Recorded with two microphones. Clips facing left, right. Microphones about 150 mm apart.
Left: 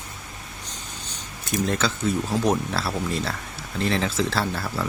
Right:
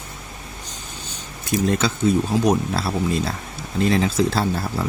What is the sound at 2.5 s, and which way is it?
Speech, 15° right (ahead or behind).